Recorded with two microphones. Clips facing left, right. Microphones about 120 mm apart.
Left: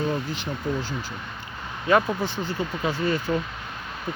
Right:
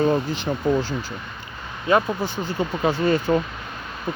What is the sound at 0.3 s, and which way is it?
Speech, 30° right (ahead or behind).